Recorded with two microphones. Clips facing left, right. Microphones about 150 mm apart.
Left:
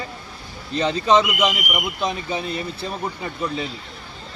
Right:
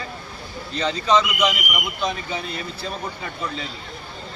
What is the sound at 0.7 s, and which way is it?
Speech, 20° left (ahead or behind).